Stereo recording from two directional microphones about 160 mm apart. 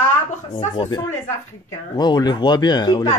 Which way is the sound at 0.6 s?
30° left (ahead or behind).